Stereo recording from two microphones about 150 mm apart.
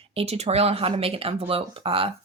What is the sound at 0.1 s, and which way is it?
Speech, 40° right (ahead or behind).